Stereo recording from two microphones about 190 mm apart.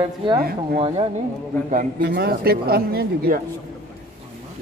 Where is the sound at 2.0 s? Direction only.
60° right (ahead or behind).